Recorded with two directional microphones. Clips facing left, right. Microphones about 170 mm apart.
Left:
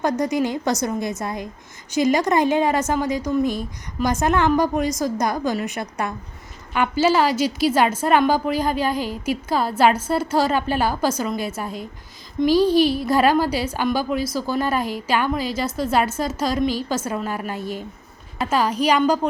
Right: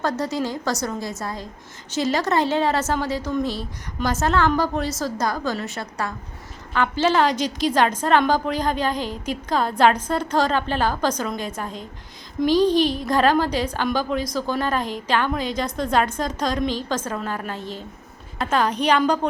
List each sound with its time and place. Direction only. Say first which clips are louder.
0.0 s a woman's voice: left 3 dB; 15° left (ahead or behind)
3.4 s speech: left 4 dB; 50° left (ahead or behind)
4.0 s a woman's voice: left 2 dB; 15° left (ahead or behind)